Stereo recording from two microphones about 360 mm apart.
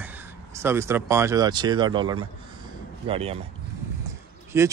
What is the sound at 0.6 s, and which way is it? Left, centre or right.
Speech, centre.